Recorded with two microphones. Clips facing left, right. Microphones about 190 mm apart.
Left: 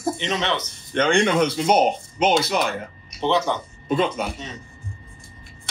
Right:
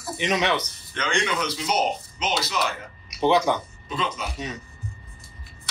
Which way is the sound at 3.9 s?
55° left (ahead or behind).